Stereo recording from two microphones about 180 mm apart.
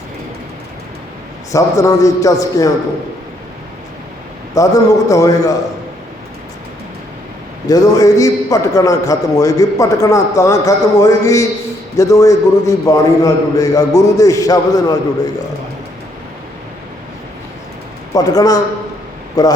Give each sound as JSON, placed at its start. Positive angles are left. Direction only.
{"t": 1.5, "sound": "a man's voice", "side_deg": 20}
{"t": 4.5, "sound": "a man's voice", "side_deg": 20}
{"t": 7.7, "sound": "a man's voice", "side_deg": 20}
{"t": 18.1, "sound": "a man's voice", "side_deg": 20}